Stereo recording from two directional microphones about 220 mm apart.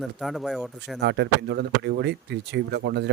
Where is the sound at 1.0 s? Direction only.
50° right (ahead or behind).